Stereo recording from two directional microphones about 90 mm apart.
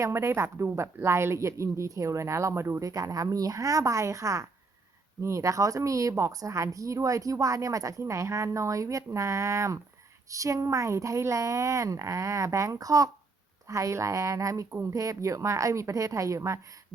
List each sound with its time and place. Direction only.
0.0 s speech: 30° right (ahead or behind)